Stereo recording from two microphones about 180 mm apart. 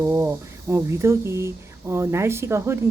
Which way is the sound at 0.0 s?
15° right (ahead or behind).